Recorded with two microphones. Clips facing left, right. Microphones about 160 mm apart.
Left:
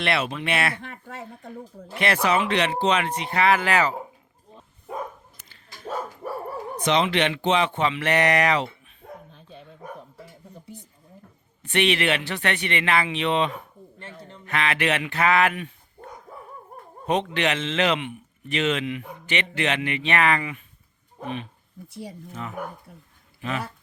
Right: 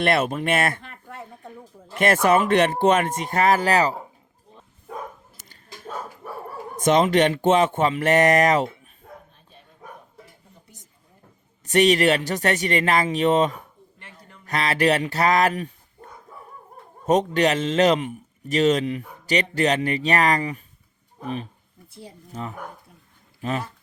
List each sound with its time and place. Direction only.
0.0 s speech: 45° right (ahead or behind)
2.0 s speech: 45° right (ahead or behind)
6.7 s speech: 45° right (ahead or behind)
9.3 s dog: 90° left
11.6 s a man's voice: 40° right (ahead or behind)
14.0 s a sound: 30° left (ahead or behind)
14.4 s a man's voice: 40° right (ahead or behind)
17.1 s a man's voice: 40° right (ahead or behind)
22.3 s a man's voice: 35° right (ahead or behind)